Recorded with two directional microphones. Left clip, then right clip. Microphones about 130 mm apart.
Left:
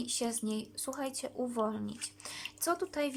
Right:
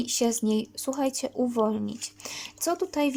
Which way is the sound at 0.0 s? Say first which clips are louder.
Right 10 dB; 25° right (ahead or behind).